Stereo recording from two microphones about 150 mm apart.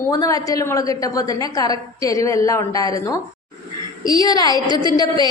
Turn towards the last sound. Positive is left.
turn(degrees=25)  # may be behind; listen again after turning